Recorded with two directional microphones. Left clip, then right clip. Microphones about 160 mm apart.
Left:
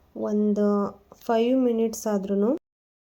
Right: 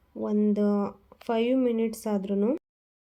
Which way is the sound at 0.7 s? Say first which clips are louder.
Left 3 dB; 5° right (ahead or behind).